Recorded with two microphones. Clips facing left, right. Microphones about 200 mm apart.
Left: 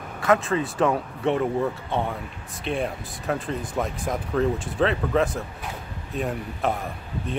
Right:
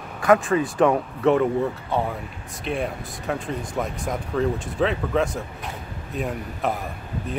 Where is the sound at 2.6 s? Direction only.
Centre (ahead or behind).